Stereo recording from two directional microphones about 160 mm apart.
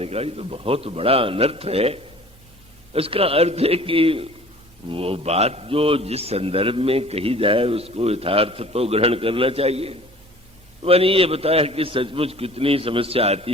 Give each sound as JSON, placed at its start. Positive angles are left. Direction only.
{"t": 0.0, "sound": "a man's voice", "side_deg": -40}